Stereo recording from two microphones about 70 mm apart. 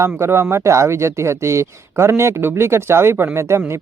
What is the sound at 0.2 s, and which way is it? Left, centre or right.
Speech, right.